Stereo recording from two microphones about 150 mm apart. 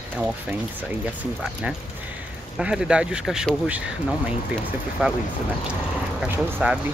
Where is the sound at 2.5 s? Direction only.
5° right (ahead or behind).